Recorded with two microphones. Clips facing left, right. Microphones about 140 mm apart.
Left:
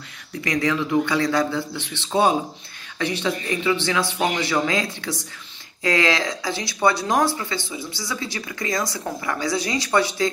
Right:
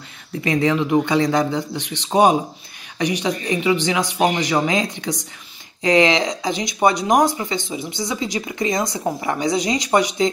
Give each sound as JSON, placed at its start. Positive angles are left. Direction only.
{"t": 0.4, "sound": "speech", "side_deg": -25}